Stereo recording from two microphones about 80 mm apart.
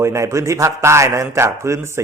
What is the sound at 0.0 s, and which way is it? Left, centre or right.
A man's voice, right.